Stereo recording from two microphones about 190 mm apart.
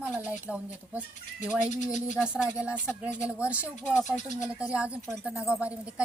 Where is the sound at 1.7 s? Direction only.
40° left (ahead or behind).